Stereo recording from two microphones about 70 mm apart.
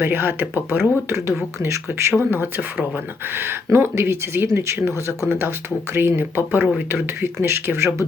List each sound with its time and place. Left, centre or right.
0.0 s speech: right
7.4 s speech: right